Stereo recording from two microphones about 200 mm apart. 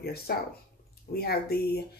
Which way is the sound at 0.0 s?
50° left (ahead or behind).